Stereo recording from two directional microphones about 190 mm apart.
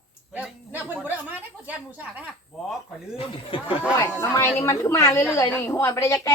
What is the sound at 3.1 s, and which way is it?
Speech, 30° left (ahead or behind).